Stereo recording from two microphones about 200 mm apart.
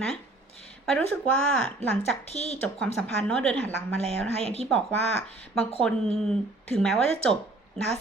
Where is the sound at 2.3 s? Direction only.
35° left (ahead or behind).